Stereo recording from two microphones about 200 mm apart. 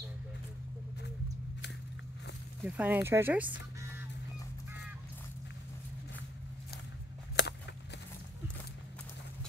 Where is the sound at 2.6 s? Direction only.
5° right (ahead or behind).